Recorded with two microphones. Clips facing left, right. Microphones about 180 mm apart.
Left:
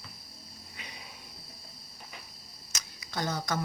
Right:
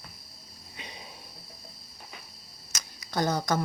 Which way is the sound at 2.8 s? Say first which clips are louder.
Right 6 dB; 40° right (ahead or behind).